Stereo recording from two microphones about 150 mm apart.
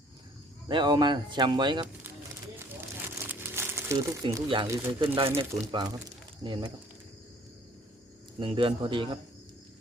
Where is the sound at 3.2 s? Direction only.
15° right (ahead or behind).